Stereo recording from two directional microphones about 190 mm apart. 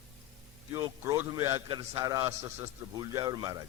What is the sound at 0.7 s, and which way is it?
A man's voice, 15° right (ahead or behind).